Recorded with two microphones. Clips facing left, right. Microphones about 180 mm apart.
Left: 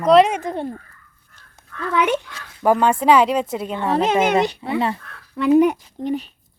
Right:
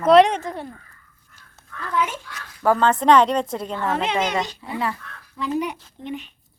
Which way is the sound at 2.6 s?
15° left (ahead or behind).